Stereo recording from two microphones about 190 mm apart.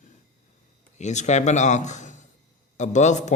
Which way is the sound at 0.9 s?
40° left (ahead or behind).